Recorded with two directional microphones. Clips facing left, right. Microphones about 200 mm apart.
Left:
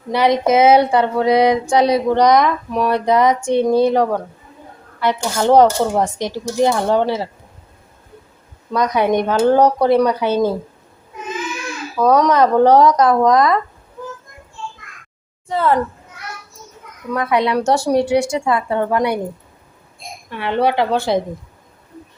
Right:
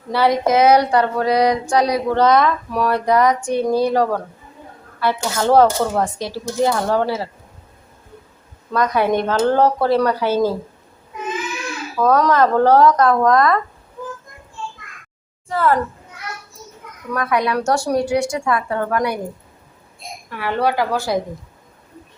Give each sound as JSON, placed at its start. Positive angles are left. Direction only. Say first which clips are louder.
{"t": 0.1, "sound": "speech", "louder": "left 2 dB", "side_deg": 20}
{"t": 4.9, "sound": "speech", "louder": "left 2 dB", "side_deg": 20}
{"t": 8.7, "sound": "speech", "louder": "left 1 dB", "side_deg": 20}
{"t": 12.0, "sound": "speech", "louder": "left 2 dB", "side_deg": 20}
{"t": 15.4, "sound": "a woman's voice", "louder": "left 1 dB", "side_deg": 20}
{"t": 17.2, "sound": "speech", "louder": "left 2 dB", "side_deg": 25}
{"t": 20.3, "sound": "speech", "louder": "left 2 dB", "side_deg": 25}